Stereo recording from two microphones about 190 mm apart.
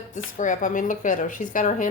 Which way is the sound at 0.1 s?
40° left (ahead or behind).